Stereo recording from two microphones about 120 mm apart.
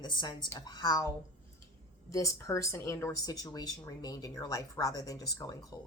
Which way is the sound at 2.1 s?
25° left (ahead or behind).